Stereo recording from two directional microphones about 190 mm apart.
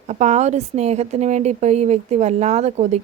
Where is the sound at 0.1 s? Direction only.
35° right (ahead or behind).